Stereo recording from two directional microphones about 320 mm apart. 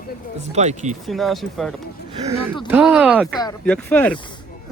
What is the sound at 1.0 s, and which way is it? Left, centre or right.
Speech, centre.